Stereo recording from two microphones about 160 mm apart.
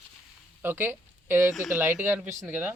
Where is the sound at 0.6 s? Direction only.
15° right (ahead or behind).